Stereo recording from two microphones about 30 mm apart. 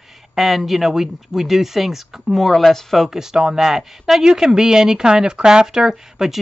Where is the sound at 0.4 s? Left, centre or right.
Centre.